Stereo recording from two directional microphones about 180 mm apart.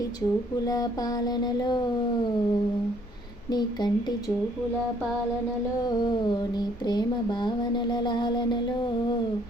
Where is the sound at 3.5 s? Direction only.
25° left (ahead or behind).